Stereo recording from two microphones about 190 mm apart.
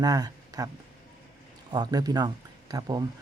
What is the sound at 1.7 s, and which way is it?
Speech, 20° right (ahead or behind).